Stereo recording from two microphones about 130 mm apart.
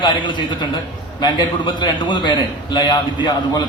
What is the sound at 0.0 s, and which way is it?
A man's voice, 35° left (ahead or behind).